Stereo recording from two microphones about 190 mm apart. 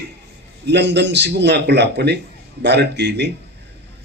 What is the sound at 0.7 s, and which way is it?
A man's voice, 65° right (ahead or behind).